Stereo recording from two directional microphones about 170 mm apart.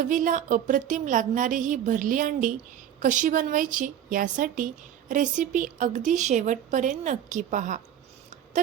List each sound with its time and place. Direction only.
0.0 s a woman's voice: 50° right (ahead or behind)